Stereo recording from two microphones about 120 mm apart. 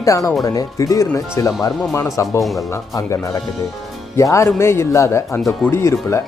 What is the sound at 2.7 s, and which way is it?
Speech, 25° left (ahead or behind).